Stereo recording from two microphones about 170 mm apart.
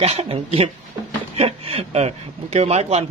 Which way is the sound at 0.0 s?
40° right (ahead or behind).